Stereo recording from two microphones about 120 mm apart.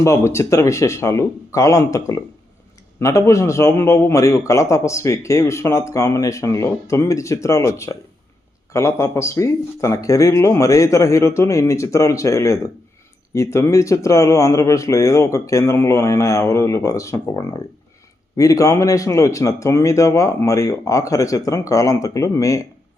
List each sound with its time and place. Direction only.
0.0 s a man's voice: 25° left (ahead or behind)